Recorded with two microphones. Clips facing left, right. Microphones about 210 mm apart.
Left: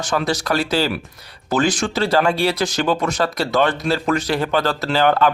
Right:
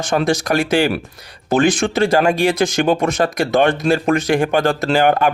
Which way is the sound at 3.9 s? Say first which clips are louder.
Right 4 dB; 50° right (ahead or behind).